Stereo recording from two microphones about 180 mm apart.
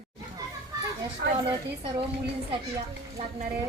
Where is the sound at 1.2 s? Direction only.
80° right.